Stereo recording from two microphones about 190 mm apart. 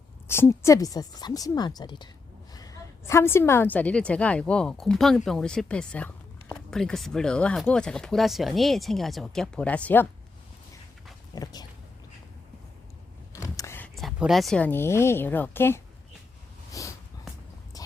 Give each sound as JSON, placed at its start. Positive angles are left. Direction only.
{"t": 0.3, "sound": "a woman's voice", "side_deg": 15}
{"t": 11.3, "sound": "a woman's voice", "side_deg": 20}
{"t": 13.3, "sound": "speech", "side_deg": 15}
{"t": 16.8, "sound": "a sound", "side_deg": 15}